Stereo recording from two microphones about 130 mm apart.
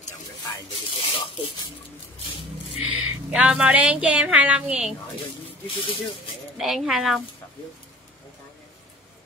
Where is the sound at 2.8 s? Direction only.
5° right (ahead or behind).